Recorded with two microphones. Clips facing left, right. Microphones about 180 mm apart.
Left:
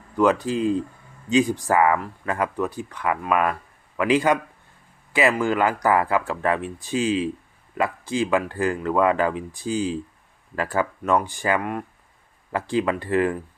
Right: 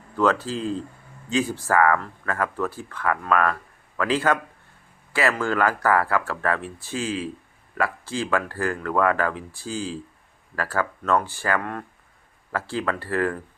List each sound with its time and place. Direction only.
0.2 s speech: 15° left (ahead or behind)